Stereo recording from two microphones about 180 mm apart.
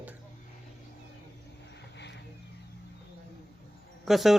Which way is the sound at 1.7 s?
70° left (ahead or behind).